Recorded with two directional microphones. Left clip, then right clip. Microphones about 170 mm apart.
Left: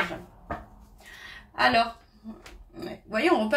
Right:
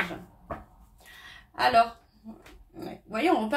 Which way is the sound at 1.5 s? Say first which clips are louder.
Left 1 dB; 35° right (ahead or behind).